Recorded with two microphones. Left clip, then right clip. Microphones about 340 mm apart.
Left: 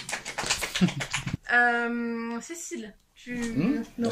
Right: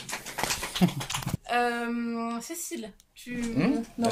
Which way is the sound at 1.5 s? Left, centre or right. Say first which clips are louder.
Left 5 dB; centre.